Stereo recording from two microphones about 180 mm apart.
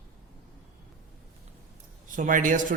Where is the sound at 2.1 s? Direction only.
45° right (ahead or behind).